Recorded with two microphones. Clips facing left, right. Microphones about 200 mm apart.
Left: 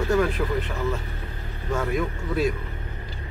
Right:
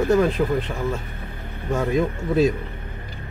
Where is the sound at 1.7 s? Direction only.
20° right (ahead or behind).